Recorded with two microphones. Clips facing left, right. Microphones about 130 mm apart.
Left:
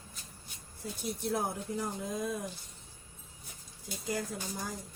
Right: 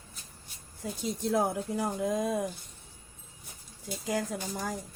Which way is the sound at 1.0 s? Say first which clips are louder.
Right 5 dB; 90° right.